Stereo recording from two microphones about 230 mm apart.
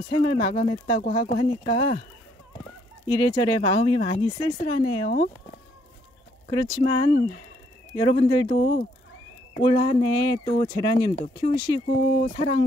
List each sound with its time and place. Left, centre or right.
0.1 s speech: left
3.1 s speech: centre
6.9 s speech: centre